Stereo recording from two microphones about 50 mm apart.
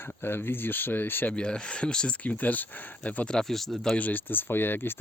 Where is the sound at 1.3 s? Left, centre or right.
Centre.